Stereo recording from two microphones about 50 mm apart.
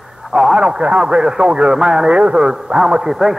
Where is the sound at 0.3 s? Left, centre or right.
Centre.